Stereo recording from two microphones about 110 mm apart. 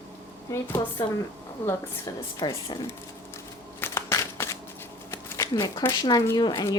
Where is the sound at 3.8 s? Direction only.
25° left (ahead or behind).